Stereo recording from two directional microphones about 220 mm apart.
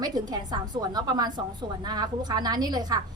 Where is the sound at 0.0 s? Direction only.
20° right (ahead or behind).